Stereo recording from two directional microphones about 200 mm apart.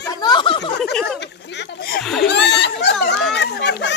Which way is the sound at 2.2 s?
60° left (ahead or behind).